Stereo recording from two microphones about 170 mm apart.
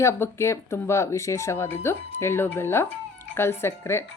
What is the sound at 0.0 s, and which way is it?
Speech, 15° left (ahead or behind).